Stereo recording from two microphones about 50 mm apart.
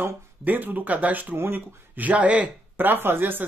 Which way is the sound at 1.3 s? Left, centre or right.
Right.